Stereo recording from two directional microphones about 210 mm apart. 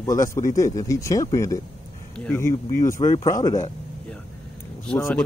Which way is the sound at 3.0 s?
20° left (ahead or behind).